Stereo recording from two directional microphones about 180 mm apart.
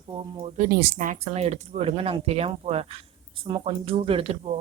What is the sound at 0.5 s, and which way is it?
Speech, 55° right (ahead or behind).